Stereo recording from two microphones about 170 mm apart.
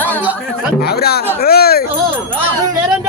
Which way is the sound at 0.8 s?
70° left (ahead or behind).